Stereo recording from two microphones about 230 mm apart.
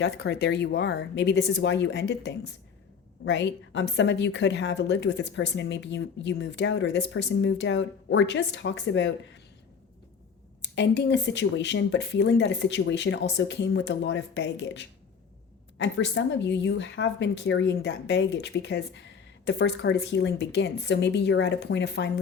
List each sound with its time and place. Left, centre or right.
0.0 s a woman's voice: left
10.6 s a woman's voice: left